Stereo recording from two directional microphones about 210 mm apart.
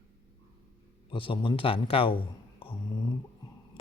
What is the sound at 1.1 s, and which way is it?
Speech, 25° left (ahead or behind).